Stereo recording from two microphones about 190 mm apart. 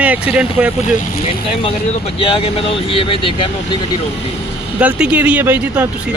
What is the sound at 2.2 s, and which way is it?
Speech, 30° left (ahead or behind).